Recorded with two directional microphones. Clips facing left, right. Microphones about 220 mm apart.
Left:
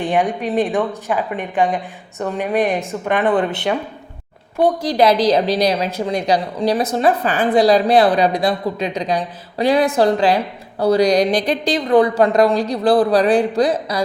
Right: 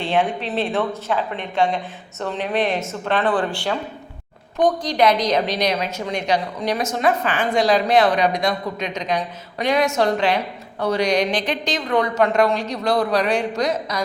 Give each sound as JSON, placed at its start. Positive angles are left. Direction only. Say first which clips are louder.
{"t": 0.0, "sound": "speech", "louder": "left 3 dB", "side_deg": 15}
{"t": 4.9, "sound": "a woman's voice", "louder": "left 4 dB", "side_deg": 30}